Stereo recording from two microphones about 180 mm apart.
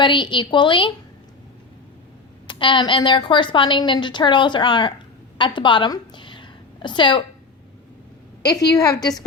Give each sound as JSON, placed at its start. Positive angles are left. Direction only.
{"t": 0.0, "sound": "a woman's voice", "side_deg": 25}
{"t": 2.5, "sound": "a woman's voice", "side_deg": 30}
{"t": 8.4, "sound": "a woman's voice", "side_deg": 65}
{"t": 8.7, "sound": "a woman's voice", "side_deg": 20}